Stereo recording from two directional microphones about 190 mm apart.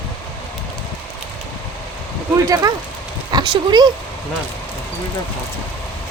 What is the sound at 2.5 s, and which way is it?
Speech, 20° right (ahead or behind).